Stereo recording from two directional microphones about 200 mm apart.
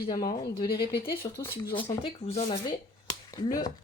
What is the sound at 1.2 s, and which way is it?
A woman's voice, 15° left (ahead or behind).